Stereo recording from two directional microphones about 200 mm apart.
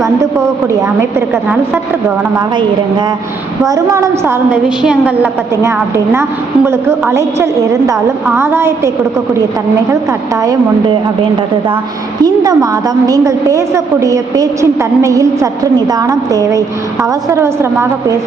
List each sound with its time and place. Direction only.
3.6 s a woman's voice: 15° right (ahead or behind)
9.9 s a woman's voice: 15° right (ahead or behind)